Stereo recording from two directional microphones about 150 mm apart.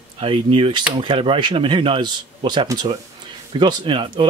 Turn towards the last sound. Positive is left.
turn(degrees=-35)  # may be behind; listen again after turning